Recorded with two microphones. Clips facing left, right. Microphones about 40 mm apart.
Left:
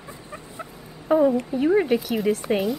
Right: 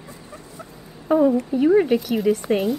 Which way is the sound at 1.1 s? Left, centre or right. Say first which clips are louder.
Right 1 dB; centre.